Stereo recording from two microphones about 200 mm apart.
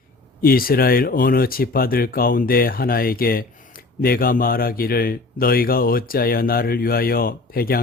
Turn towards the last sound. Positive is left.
turn(degrees=50)  # may be behind; listen again after turning